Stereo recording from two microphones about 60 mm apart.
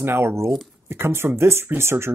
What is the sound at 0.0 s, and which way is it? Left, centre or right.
Speech, right.